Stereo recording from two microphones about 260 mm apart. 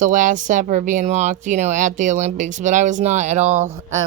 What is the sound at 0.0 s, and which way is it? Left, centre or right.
Speech, right.